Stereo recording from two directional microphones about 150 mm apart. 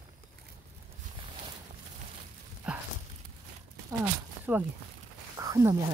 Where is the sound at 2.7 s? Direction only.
5° right (ahead or behind).